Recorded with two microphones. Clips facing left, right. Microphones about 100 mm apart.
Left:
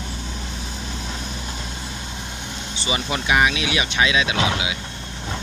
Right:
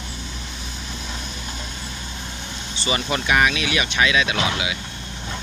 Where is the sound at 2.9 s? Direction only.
15° left (ahead or behind).